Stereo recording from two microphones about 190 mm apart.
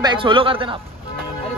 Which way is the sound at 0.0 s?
25° right (ahead or behind).